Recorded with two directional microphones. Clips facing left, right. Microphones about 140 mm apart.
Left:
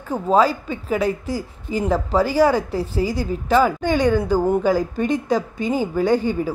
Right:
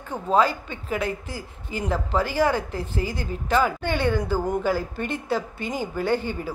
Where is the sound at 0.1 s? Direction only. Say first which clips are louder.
Left 6 dB; 35° left (ahead or behind).